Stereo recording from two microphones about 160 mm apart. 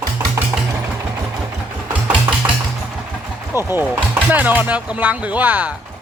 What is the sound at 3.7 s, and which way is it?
Speech, 10° right (ahead or behind).